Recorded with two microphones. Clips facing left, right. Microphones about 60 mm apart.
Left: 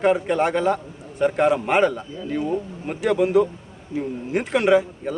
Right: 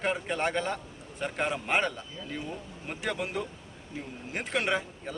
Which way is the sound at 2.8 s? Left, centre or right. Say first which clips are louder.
Left 11 dB; centre.